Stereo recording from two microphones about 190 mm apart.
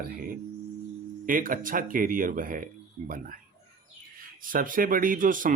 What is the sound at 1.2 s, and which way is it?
Speech, 45° right (ahead or behind).